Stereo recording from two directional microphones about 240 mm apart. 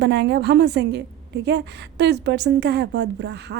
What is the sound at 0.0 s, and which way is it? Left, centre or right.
A woman's voice, right.